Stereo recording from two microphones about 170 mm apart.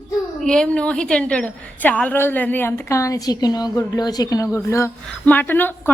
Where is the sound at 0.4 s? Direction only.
5° left (ahead or behind).